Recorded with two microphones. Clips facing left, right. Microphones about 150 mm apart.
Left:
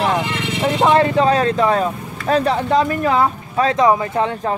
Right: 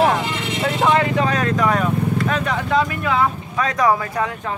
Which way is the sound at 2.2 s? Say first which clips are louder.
Left 5 dB; 35° left (ahead or behind).